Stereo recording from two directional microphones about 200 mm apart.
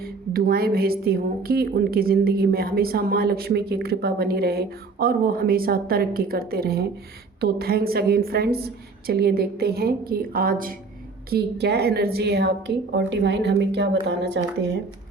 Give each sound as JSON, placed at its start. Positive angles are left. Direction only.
{"t": 0.0, "sound": "a woman's voice", "side_deg": -50}